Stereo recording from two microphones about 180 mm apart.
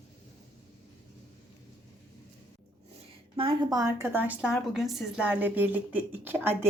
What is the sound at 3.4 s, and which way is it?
A woman's voice, 25° right (ahead or behind).